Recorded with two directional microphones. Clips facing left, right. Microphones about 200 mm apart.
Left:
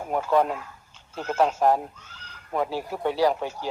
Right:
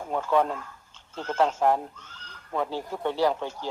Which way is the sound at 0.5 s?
10° left (ahead or behind).